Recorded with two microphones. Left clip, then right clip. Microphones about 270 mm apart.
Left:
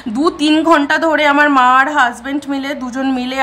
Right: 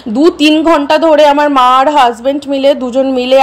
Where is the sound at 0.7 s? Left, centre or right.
Centre.